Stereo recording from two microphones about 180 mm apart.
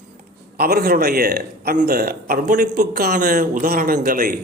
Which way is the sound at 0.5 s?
60° right (ahead or behind).